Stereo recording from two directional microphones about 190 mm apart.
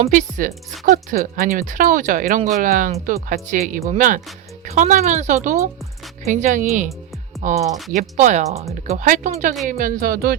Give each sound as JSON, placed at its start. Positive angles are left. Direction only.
{"t": 0.0, "sound": "speech", "side_deg": -40}
{"t": 7.7, "sound": "speech", "side_deg": 0}
{"t": 7.9, "sound": "speech", "side_deg": -40}